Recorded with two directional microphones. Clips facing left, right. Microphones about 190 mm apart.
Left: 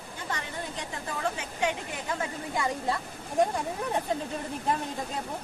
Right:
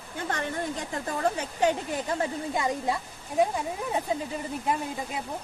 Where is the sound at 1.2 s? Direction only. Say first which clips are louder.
Right 5 dB; 40° right (ahead or behind).